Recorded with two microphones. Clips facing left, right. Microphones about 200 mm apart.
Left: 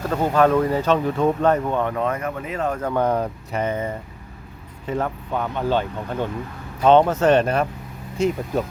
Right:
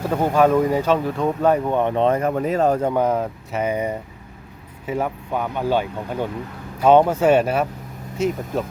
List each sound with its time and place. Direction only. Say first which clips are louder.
0.0 s speech: right 1 dB; 15° right (ahead or behind)
1.5 s speech: right 2 dB; 10° right (ahead or behind); by 2.9 s 35° right (ahead or behind)
2.9 s speech: right 1 dB; 5° right (ahead or behind)